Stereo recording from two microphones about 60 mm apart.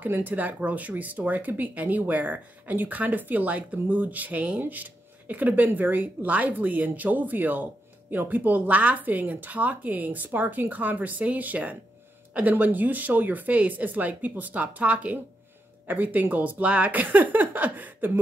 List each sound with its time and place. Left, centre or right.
0.0 s speech: right